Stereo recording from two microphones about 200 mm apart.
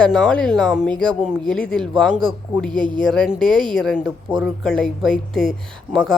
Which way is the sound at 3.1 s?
Centre (ahead or behind).